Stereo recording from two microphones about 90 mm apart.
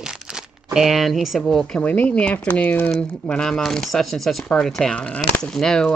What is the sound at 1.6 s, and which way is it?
Speech, 10° left (ahead or behind).